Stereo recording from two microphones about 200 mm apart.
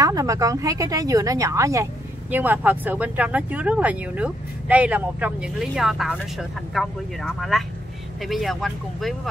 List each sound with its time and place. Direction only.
0.0 s speech: 15° right (ahead or behind); by 9.3 s centre (ahead or behind)